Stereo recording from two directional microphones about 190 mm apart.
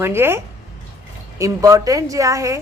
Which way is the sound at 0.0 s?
10° right (ahead or behind).